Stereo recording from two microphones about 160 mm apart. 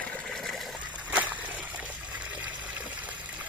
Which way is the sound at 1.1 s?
10° right (ahead or behind).